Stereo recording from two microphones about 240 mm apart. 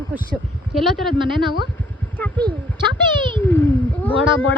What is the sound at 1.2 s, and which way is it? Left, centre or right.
Speech, centre.